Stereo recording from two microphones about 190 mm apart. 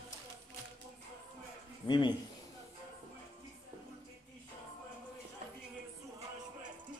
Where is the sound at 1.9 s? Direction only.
25° left (ahead or behind).